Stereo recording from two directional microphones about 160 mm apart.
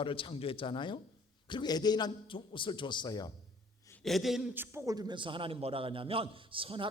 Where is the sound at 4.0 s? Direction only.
Centre (ahead or behind).